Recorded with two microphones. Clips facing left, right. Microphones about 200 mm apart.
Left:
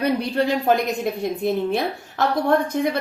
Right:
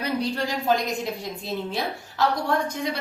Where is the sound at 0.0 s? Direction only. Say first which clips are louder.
Left 5 dB; 60° left (ahead or behind).